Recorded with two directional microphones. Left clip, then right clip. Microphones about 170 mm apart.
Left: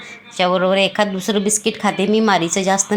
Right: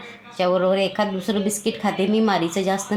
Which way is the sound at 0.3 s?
25° left (ahead or behind).